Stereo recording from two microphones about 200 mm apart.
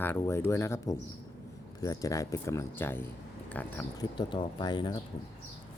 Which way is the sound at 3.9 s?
20° left (ahead or behind).